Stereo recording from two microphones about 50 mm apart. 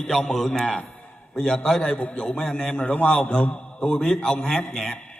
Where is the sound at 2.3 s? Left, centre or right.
Centre.